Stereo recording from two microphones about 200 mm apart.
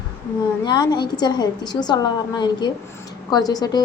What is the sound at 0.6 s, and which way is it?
A woman's voice, 20° left (ahead or behind).